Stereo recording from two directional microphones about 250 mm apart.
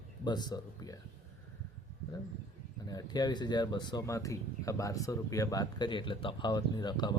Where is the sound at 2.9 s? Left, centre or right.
Centre.